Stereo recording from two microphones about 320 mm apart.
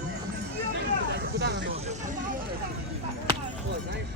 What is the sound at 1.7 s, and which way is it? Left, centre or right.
Vehicle, right.